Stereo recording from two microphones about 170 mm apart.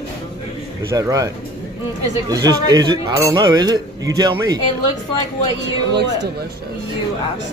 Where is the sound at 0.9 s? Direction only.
20° right (ahead or behind).